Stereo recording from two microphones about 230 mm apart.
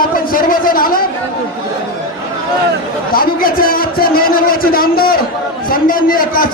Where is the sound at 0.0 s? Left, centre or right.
Left.